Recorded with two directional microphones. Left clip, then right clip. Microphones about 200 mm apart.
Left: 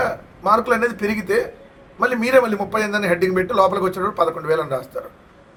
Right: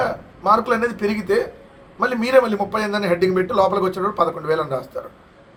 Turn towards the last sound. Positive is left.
turn(degrees=0)  # may be behind; listen again after turning